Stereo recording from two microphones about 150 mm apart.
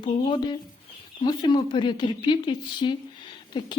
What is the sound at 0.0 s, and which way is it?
A woman's voice, 30° left (ahead or behind).